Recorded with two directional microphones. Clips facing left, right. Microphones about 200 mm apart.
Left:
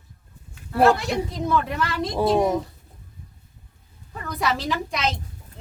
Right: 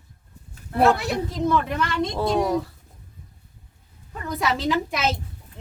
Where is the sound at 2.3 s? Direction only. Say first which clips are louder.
Even; 20° left (ahead or behind).